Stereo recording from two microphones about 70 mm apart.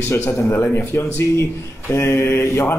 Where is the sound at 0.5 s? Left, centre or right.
Left.